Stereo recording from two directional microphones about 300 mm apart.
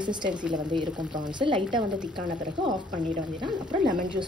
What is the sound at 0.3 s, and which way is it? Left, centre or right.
Speech, centre.